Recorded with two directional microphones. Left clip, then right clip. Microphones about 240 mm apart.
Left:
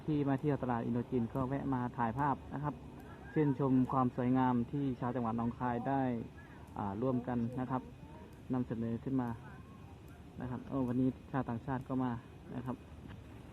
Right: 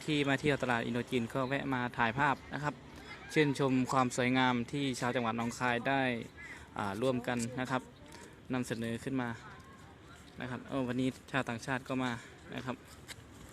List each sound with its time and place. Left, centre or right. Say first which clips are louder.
0.1 s speech: right 4 dB; right
10.4 s speech: right 2 dB; right